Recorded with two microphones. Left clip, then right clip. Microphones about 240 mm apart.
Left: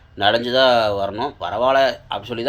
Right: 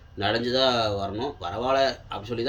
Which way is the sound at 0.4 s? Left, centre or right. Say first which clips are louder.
Left 7 dB; centre.